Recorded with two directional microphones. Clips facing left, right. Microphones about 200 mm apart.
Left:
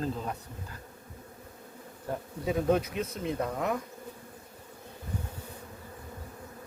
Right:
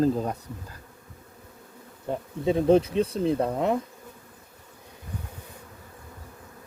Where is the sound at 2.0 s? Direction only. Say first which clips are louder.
Right 6 dB; 25° right (ahead or behind).